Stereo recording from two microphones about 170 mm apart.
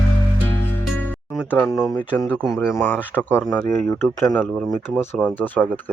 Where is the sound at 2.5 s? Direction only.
15° left (ahead or behind).